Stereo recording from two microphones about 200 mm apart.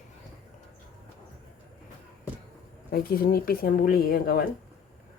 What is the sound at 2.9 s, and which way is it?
Speech, 50° left (ahead or behind).